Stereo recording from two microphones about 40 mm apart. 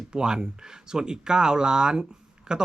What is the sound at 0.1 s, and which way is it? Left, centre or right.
Speech, centre.